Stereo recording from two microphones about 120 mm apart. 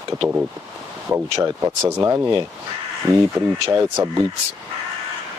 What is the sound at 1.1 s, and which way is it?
Speech, 20° right (ahead or behind).